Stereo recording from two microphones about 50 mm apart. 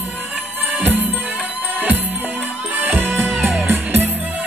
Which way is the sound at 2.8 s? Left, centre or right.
Right.